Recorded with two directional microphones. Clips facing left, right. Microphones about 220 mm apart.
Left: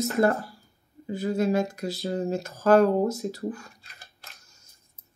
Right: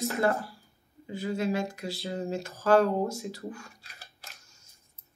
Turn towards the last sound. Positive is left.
turn(degrees=40)  # may be behind; listen again after turning